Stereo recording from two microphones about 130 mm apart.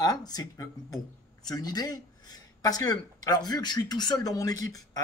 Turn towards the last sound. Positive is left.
turn(degrees=25)  # may be behind; listen again after turning